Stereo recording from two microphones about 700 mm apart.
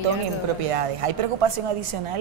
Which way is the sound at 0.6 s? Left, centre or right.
Right.